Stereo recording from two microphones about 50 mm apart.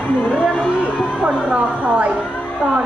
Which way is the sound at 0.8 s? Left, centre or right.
Right.